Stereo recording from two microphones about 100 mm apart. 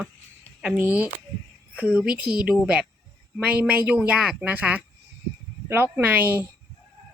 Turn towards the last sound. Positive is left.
turn(degrees=-20)  # may be behind; listen again after turning